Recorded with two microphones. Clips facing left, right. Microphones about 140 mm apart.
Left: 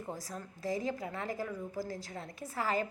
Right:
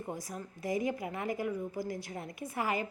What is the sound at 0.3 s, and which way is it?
A woman's voice, 15° right (ahead or behind).